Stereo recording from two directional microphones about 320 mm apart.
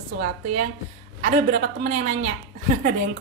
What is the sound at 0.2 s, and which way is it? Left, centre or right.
A woman's voice, right.